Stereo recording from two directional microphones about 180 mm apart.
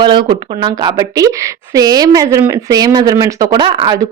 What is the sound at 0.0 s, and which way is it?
Speech, 25° right (ahead or behind).